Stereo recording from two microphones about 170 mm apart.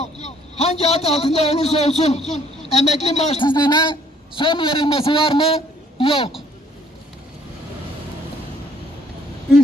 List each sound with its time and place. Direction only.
0.5 s a man's voice: 40° left (ahead or behind)